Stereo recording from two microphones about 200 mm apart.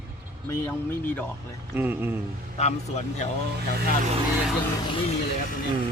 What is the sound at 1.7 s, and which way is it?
Speech, 10° right (ahead or behind).